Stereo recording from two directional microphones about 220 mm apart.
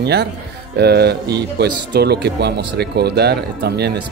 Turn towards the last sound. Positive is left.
turn(degrees=-50)  # may be behind; listen again after turning